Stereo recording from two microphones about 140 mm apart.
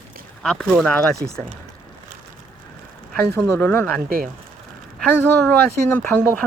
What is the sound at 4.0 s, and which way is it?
Speech, 90° right.